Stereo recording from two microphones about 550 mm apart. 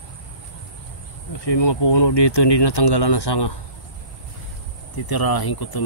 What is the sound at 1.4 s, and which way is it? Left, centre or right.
Speech, left.